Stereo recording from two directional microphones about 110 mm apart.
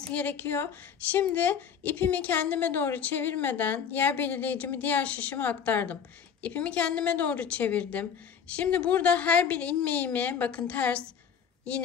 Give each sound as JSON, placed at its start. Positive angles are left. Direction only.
{"t": 0.0, "sound": "a woman's voice", "side_deg": 15}